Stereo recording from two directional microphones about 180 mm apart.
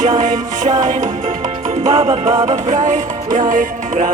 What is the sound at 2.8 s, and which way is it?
Music, 45° right (ahead or behind).